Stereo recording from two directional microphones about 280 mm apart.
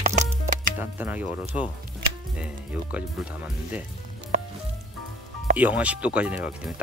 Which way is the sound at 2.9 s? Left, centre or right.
Centre.